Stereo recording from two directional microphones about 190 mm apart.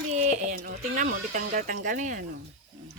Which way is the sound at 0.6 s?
45° right (ahead or behind).